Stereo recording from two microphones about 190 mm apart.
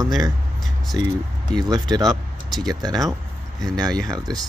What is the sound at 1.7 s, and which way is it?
Speech, 20° right (ahead or behind).